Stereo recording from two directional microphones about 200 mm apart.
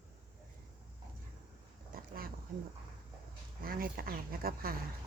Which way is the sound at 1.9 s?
45° right (ahead or behind).